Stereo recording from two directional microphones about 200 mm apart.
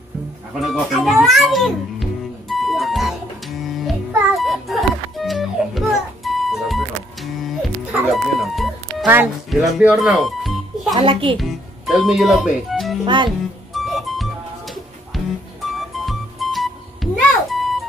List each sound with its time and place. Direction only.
0.6 s music: centre (ahead or behind)
8.1 s speech: centre (ahead or behind)
11.0 s a child's voice: 25° right (ahead or behind)
11.3 s speech: centre (ahead or behind)
13.0 s speech: 25° right (ahead or behind)
13.7 s music: centre (ahead or behind)